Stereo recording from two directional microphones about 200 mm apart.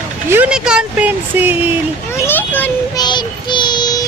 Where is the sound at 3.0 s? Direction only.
20° left (ahead or behind).